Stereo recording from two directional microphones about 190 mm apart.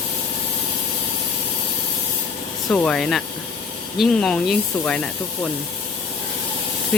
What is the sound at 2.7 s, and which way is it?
Speech, 5° left (ahead or behind).